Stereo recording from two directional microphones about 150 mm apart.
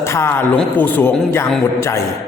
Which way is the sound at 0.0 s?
15° left (ahead or behind).